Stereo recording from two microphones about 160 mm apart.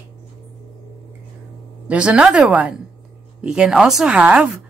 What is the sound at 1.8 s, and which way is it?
Speech, 5° right (ahead or behind).